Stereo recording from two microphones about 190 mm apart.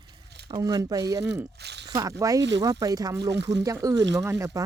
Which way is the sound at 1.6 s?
60° right (ahead or behind).